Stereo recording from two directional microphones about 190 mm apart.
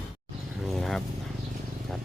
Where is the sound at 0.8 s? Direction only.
Centre (ahead or behind).